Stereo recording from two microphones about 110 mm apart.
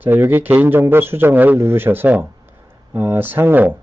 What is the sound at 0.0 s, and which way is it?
A man's voice, 20° right (ahead or behind).